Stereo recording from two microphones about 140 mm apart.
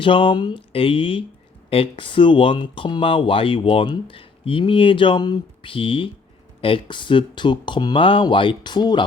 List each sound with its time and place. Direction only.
0.0 s speech: 35° left (ahead or behind)